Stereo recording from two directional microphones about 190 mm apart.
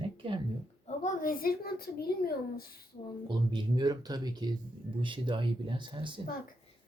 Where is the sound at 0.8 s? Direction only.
40° left (ahead or behind).